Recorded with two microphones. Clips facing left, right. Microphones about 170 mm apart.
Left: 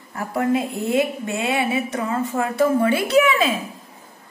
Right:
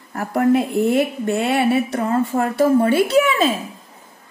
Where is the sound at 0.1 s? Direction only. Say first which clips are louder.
Right 4 dB; 55° right (ahead or behind).